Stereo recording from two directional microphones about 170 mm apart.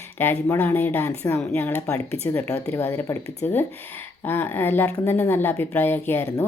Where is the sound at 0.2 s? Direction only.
15° left (ahead or behind).